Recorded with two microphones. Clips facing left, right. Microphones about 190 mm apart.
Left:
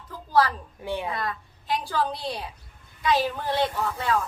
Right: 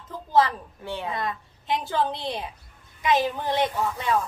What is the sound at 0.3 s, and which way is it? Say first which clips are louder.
A woman's voice: right 1 dB; 20° right (ahead or behind).